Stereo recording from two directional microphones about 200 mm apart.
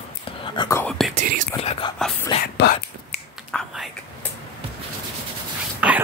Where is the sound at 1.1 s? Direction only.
45° right (ahead or behind).